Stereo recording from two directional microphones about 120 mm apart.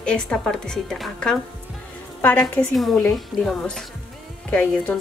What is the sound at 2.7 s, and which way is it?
A woman's voice, centre (ahead or behind).